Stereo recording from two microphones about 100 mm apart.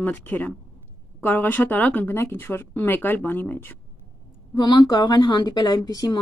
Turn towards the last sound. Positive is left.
turn(degrees=40)  # may be behind; listen again after turning